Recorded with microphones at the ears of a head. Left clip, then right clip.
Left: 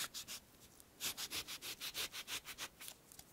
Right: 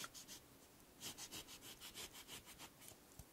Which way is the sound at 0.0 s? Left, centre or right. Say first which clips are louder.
Left 8 dB; left.